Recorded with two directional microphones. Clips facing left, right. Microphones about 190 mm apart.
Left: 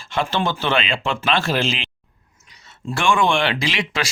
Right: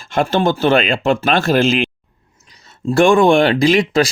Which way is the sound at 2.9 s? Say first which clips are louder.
Right 9 dB; 40° right (ahead or behind).